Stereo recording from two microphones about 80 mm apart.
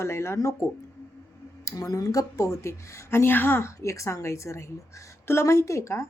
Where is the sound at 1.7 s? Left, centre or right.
Left.